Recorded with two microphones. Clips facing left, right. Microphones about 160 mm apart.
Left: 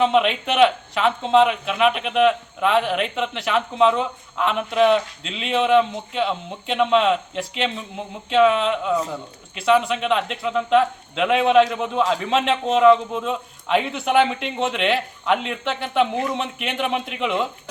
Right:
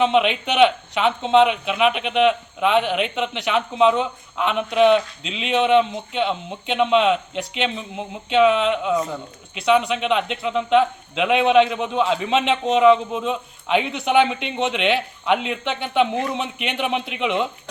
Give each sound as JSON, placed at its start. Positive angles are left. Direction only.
{"t": 0.0, "sound": "speech", "side_deg": 0}